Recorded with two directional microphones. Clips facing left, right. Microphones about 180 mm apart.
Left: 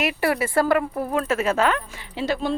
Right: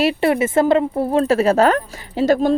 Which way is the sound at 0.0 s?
25° right (ahead or behind).